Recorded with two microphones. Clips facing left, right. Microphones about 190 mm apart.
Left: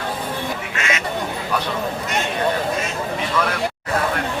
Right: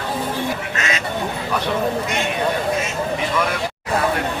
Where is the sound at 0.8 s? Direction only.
35° right (ahead or behind).